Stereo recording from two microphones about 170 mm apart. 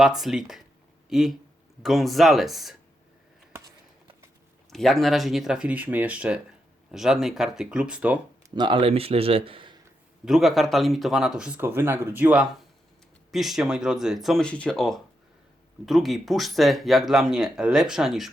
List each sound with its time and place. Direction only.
0.0 s speech: centre (ahead or behind)
4.7 s speech: centre (ahead or behind)
8.4 s a man's voice: 25° right (ahead or behind)
10.2 s speech: centre (ahead or behind)